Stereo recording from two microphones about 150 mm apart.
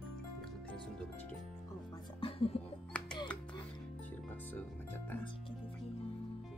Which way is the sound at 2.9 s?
10° left (ahead or behind).